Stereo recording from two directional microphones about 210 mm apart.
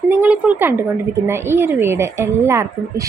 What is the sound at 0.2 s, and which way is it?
A woman's voice, 5° right (ahead or behind).